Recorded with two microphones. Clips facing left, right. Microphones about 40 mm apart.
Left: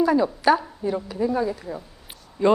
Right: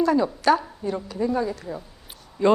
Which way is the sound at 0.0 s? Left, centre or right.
Centre.